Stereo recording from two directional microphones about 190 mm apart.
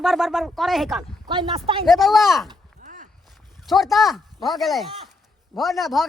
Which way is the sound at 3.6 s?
Centre (ahead or behind).